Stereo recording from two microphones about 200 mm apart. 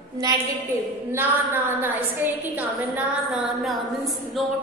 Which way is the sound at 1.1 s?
10° right (ahead or behind).